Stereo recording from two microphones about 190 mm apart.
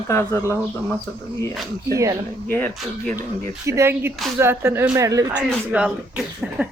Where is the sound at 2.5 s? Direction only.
10° left (ahead or behind).